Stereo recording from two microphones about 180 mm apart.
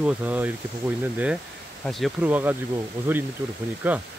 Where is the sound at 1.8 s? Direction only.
Centre (ahead or behind).